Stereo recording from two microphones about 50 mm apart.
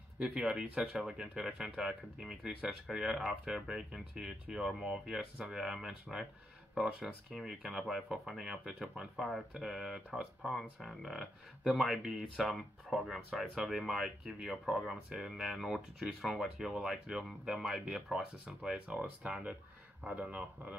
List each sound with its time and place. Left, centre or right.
0.2 s speech: centre
20.1 s speech: right